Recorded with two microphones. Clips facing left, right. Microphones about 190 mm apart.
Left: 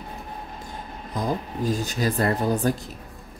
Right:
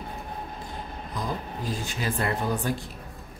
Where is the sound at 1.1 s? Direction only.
45° left (ahead or behind).